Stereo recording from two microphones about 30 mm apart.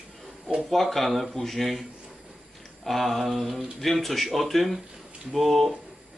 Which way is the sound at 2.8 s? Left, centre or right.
Centre.